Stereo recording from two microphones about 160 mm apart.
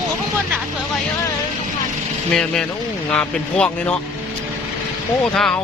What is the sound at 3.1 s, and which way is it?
Speech, 5° left (ahead or behind).